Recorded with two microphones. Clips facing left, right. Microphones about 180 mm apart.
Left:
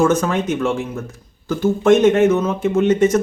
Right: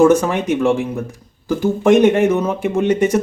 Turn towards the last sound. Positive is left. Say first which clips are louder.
# left 1 dB
turn(degrees=-10)  # may be behind; listen again after turning